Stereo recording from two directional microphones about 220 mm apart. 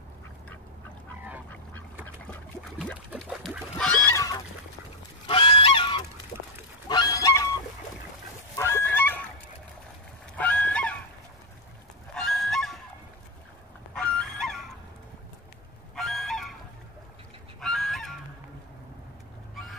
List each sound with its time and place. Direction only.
1.5 s duck: 10° left (ahead or behind)
2.8 s fowl: centre (ahead or behind)
5.2 s goose: 25° left (ahead or behind)
8.5 s goose: 10° left (ahead or behind)
10.3 s goose: 5° left (ahead or behind)
12.1 s goose: centre (ahead or behind)
13.9 s fowl: 5° left (ahead or behind)
15.9 s goose: centre (ahead or behind)
17.6 s goose: centre (ahead or behind)